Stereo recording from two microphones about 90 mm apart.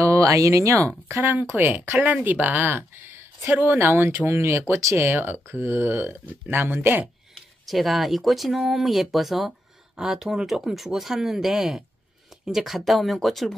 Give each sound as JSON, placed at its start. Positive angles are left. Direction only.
{"t": 0.0, "sound": "speech", "side_deg": -35}
{"t": 1.2, "sound": "speech", "side_deg": -20}
{"t": 7.3, "sound": "speech", "side_deg": 0}